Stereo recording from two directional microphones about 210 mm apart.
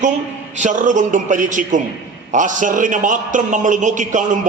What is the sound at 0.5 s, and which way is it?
A man's voice, 35° right (ahead or behind).